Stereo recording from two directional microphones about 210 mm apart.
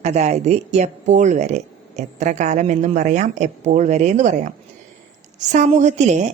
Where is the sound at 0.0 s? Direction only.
30° right (ahead or behind).